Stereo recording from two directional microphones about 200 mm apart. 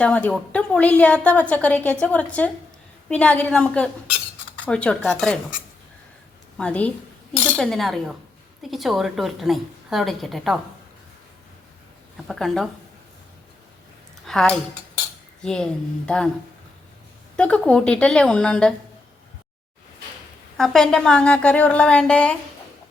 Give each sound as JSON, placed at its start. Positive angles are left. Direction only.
{"t": 0.0, "sound": "a woman's voice", "side_deg": 5}
{"t": 6.6, "sound": "a woman's voice", "side_deg": 5}
{"t": 12.1, "sound": "a woman's voice", "side_deg": 0}
{"t": 14.3, "sound": "a woman's voice", "side_deg": 0}
{"t": 17.3, "sound": "a woman's voice", "side_deg": 5}
{"t": 20.6, "sound": "a woman's voice", "side_deg": 0}